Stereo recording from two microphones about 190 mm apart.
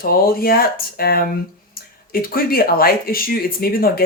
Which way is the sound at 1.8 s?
50° left (ahead or behind).